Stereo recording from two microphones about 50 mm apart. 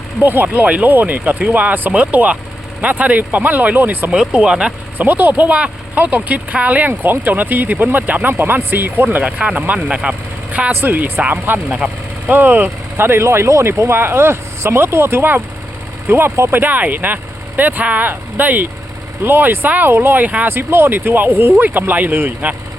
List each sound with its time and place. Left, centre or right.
0.2 s speech: right
4.1 s speech: right
4.9 s speech: right
8.3 s speech: right
9.2 s speech: right
9.6 s speech: right
9.9 s speech: centre
10.7 s speech: right
13.0 s speech: right
19.2 s speech: right
19.6 s speech: right
19.9 s speech: right
20.2 s speech: right
20.5 s speech: right